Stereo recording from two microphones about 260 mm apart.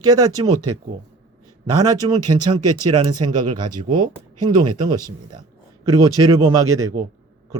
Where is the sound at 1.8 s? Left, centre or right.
Centre.